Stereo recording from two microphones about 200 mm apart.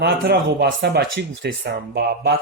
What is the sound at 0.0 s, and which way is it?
Speech, 55° right (ahead or behind).